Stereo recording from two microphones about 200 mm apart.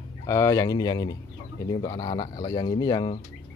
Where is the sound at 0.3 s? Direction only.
15° left (ahead or behind).